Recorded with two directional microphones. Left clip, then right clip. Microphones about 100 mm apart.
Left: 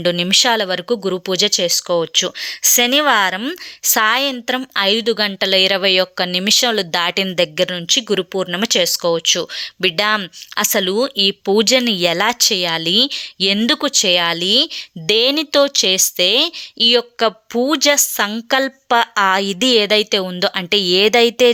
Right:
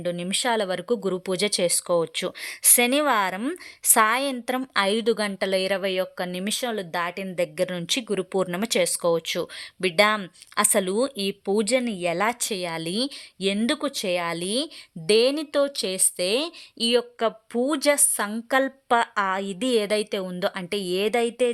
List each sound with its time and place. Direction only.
0.0 s speech: 40° left (ahead or behind)
0.4 s a woman's voice: 15° left (ahead or behind)
1.5 s a woman's voice: centre (ahead or behind); by 7.3 s 40° left (ahead or behind)
7.3 s a woman's voice: 20° left (ahead or behind)
7.7 s a woman's voice: centre (ahead or behind)
13.5 s a woman's voice: 30° left (ahead or behind)